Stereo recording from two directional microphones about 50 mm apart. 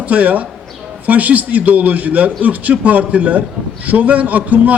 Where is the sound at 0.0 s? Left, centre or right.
Right.